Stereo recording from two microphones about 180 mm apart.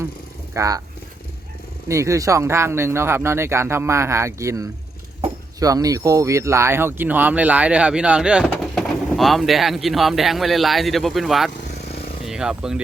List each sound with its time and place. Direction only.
0.5 s speech: 20° right (ahead or behind)
1.9 s speech: 15° right (ahead or behind)